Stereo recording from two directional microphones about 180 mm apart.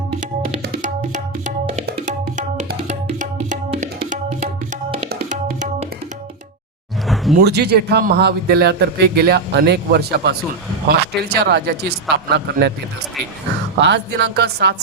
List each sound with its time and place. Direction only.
0.8 s tabla: 45° right (ahead or behind)
5.3 s music: 45° right (ahead or behind)
7.3 s a man's voice: 65° right (ahead or behind)
13.7 s speech: 75° right (ahead or behind)